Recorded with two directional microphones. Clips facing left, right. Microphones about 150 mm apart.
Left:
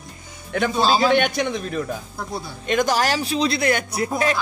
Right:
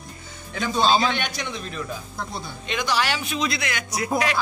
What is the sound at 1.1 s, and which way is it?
Speech, 55° left (ahead or behind).